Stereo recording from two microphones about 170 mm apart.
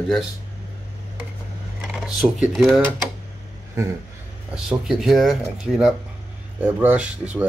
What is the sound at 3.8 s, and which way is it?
Speech, 15° right (ahead or behind).